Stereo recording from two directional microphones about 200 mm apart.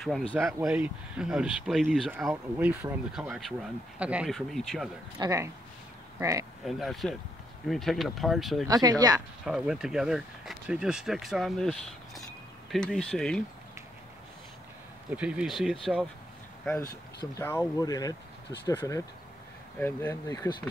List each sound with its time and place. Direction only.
0.3 s speech: centre (ahead or behind)
5.2 s speech: 15° right (ahead or behind)
6.6 s speech: centre (ahead or behind)
8.6 s speech: 20° right (ahead or behind)
9.4 s speech: 5° right (ahead or behind)
15.0 s speech: 5° right (ahead or behind)
17.2 s speech: 15° left (ahead or behind)